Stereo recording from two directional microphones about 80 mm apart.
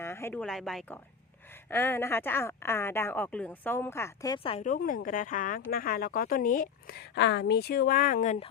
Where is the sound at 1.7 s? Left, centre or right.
Left.